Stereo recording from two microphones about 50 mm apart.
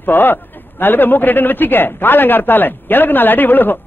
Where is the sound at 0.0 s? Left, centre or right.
Left.